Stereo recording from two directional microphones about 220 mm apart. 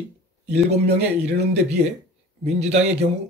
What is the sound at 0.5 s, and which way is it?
Speech, 30° right (ahead or behind).